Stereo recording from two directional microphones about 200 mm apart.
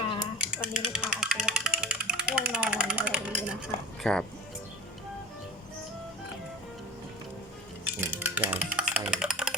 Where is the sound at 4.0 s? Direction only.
5° left (ahead or behind).